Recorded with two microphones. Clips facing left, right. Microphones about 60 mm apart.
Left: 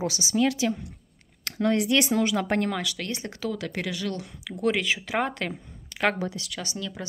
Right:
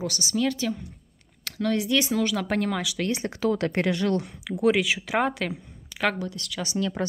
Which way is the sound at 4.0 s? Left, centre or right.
Right.